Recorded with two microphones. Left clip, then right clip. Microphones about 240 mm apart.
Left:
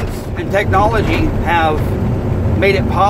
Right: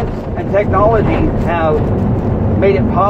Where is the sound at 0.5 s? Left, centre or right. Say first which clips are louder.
Right 2 dB; left.